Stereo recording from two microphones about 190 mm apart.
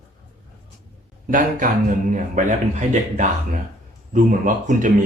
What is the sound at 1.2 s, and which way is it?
A man's voice, 45° right (ahead or behind).